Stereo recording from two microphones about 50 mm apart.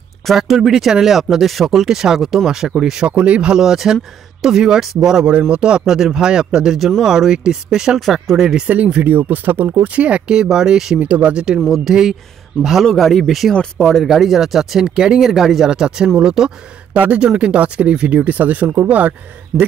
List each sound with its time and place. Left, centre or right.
0.4 s speech: centre
3.5 s speech: centre
8.0 s speech: centre
8.4 s speech: centre
8.6 s speech: right
9.3 s speech: right
9.9 s speech: right
11.0 s speech: right
11.9 s speech: centre
12.9 s speech: centre
13.5 s speech: centre
14.0 s speech: centre
16.9 s speech: right
17.2 s speech: centre